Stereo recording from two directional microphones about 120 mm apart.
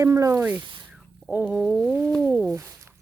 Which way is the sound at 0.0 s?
25° right (ahead or behind).